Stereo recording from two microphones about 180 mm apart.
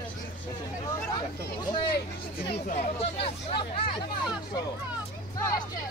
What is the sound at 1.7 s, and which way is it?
Speech, 25° left (ahead or behind).